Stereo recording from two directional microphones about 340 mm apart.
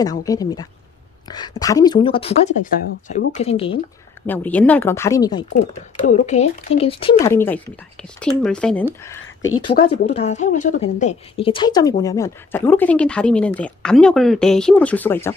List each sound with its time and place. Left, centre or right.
0.0 s speech: centre
4.3 s speech: centre
9.2 s a sound: left
9.6 s a woman's voice: centre